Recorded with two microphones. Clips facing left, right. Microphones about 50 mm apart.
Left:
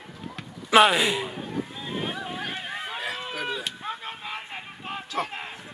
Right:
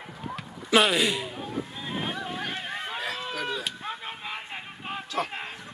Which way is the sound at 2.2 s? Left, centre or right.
Centre.